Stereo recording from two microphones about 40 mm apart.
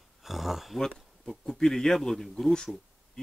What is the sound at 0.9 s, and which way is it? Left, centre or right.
Speech, centre.